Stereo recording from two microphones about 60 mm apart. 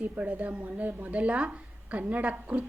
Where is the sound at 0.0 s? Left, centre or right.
Right.